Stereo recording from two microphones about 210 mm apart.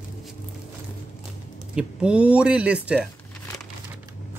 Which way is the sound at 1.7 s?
5° right (ahead or behind).